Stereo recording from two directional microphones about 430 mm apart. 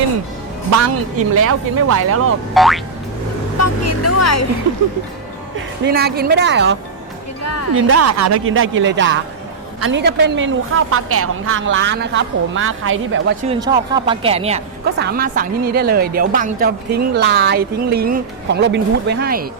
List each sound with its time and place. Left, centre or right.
1.4 s speech: right
2.6 s music: centre
3.6 s speech: left
5.8 s a woman's voice: right
7.4 s speech: left
7.8 s a woman's voice: right
13.5 s a woman's voice: centre